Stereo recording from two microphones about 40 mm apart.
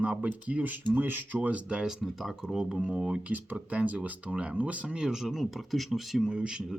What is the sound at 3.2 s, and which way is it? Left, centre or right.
Speech, right.